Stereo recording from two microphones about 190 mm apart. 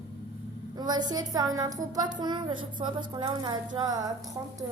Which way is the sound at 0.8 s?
20° right (ahead or behind).